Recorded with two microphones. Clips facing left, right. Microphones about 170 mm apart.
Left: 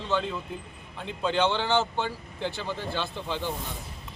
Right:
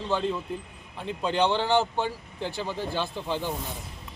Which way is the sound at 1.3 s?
40° right (ahead or behind).